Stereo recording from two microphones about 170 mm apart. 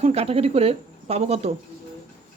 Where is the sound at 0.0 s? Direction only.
35° right (ahead or behind).